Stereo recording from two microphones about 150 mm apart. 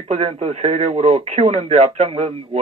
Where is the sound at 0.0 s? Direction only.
45° right (ahead or behind).